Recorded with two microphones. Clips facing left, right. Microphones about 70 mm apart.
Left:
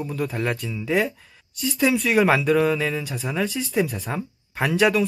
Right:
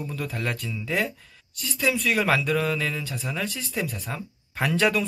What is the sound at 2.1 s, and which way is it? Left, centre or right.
Speech, centre.